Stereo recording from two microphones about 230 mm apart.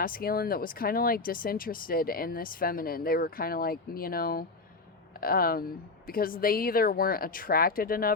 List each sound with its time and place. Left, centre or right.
0.0 s speech: left